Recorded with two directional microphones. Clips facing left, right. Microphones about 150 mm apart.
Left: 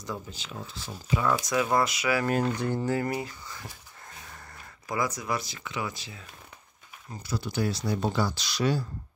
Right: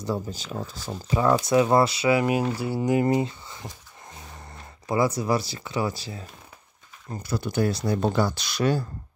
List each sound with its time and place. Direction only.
0.0 s speech: 35° right (ahead or behind)
2.2 s speech: 10° right (ahead or behind); by 6.2 s 35° right (ahead or behind)
7.1 s speech: 55° right (ahead or behind)